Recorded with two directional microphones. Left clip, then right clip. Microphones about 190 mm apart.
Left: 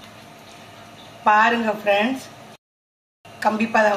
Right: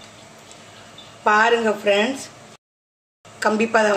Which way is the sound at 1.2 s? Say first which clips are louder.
Even; 55° right (ahead or behind).